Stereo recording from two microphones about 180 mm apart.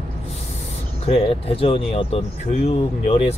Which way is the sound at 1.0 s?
35° left (ahead or behind).